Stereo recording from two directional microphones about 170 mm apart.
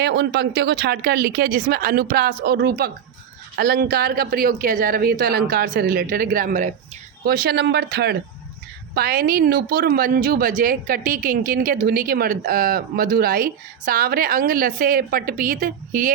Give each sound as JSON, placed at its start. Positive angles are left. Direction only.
{"t": 0.0, "sound": "a woman's voice", "side_deg": -80}
{"t": 7.3, "sound": "a woman's voice", "side_deg": -70}